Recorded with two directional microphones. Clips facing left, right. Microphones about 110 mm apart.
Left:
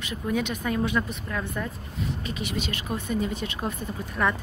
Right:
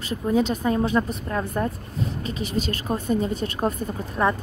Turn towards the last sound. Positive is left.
turn(degrees=-30)  # may be behind; listen again after turning